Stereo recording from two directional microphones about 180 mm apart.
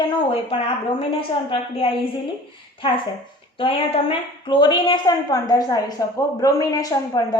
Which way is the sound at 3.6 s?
30° left (ahead or behind).